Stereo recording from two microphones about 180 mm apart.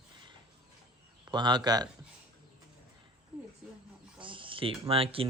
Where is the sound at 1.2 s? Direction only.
25° right (ahead or behind).